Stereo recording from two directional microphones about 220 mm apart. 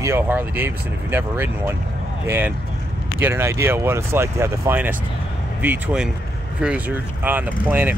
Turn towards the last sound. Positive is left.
turn(degrees=-10)  # may be behind; listen again after turning